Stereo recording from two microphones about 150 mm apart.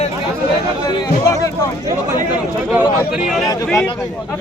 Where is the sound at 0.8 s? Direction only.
25° left (ahead or behind).